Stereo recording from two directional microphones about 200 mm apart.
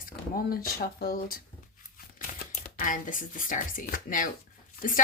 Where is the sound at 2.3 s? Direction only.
45° left (ahead or behind).